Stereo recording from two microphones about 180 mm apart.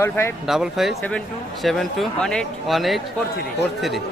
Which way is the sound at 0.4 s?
Centre (ahead or behind).